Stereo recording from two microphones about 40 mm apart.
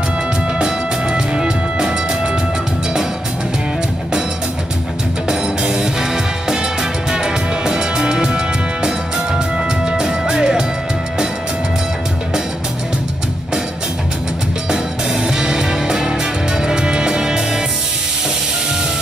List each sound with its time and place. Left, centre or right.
0.6 s music: centre
5.3 s music: centre
14.7 s music: centre